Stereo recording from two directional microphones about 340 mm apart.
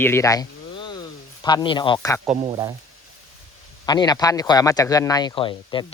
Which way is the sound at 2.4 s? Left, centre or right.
Centre.